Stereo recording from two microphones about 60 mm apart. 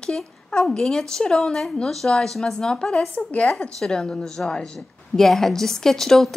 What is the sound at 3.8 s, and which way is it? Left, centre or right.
A woman's voice, centre.